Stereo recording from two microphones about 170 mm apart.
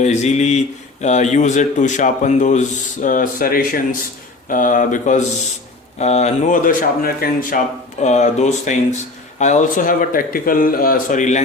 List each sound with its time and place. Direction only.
0.0 s speech: 40° left (ahead or behind)
8.0 s speech: 45° left (ahead or behind)